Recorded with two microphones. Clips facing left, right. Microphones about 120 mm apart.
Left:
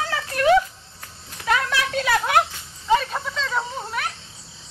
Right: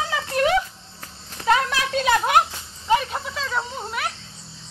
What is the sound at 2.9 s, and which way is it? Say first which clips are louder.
Snake: left 1 dB; 10° right (ahead or behind).